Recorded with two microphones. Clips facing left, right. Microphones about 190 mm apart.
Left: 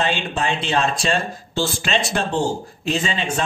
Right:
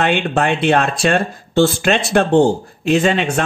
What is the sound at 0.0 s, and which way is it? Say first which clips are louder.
Speech: right 6 dB; 60° right (ahead or behind).